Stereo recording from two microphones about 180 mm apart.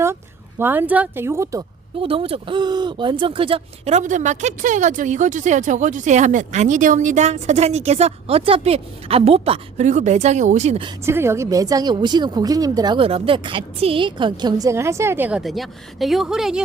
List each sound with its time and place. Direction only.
0.6 s speech: 10° right (ahead or behind)
2.0 s speech: 30° right (ahead or behind)
11.0 s a woman's voice: 15° right (ahead or behind)